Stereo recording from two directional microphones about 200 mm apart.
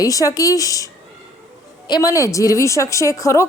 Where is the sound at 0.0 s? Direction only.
15° left (ahead or behind).